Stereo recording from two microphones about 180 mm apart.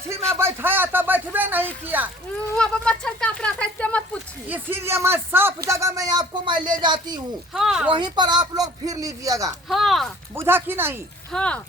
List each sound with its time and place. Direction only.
0.3 s speech: 10° right (ahead or behind)
2.5 s speech: 5° left (ahead or behind)
4.4 s speech: 10° right (ahead or behind)
5.6 s a sound: 15° right (ahead or behind)
7.5 s speech: centre (ahead or behind)
7.9 s speech: 25° right (ahead or behind)
9.6 s speech: centre (ahead or behind)
10.3 s speech: 10° right (ahead or behind)
11.3 s speech: 5° left (ahead or behind)